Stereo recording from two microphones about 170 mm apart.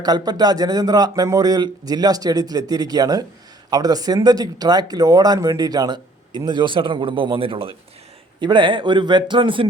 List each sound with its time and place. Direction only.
0.0 s speech: 25° right (ahead or behind)